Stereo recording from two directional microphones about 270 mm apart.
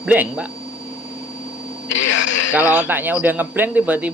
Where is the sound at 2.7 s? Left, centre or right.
Centre.